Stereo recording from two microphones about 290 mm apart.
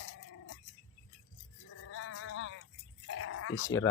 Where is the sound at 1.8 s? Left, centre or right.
Left.